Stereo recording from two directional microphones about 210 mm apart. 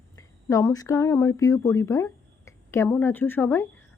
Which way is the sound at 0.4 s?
15° left (ahead or behind).